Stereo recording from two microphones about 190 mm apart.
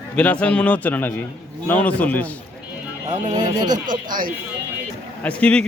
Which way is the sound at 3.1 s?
40° right (ahead or behind).